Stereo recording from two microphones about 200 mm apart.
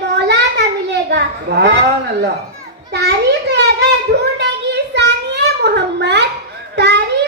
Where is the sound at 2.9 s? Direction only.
55° right (ahead or behind).